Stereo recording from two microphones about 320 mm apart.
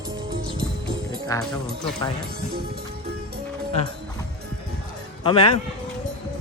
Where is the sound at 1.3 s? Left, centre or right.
Centre.